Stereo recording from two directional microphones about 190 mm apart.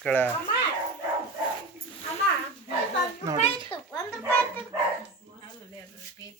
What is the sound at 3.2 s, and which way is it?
Speech, 15° right (ahead or behind).